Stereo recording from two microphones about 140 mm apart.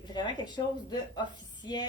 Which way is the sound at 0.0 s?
35° left (ahead or behind).